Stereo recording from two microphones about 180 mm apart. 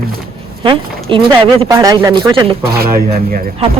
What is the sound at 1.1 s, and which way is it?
Speech, 25° right (ahead or behind).